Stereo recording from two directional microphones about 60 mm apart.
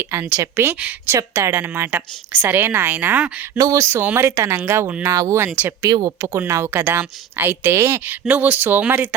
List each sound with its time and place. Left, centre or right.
0.1 s a woman's voice: right
3.6 s speech: right
4.0 s speech: right
4.4 s speech: right
5.0 s speech: right
5.9 s speech: right
6.5 s speech: right
8.3 s a woman's voice: right
8.8 s speech: right